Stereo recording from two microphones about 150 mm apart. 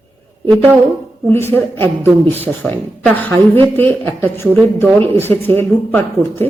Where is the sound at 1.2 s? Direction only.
15° left (ahead or behind).